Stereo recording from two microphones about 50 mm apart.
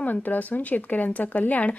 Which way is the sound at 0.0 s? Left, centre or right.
Left.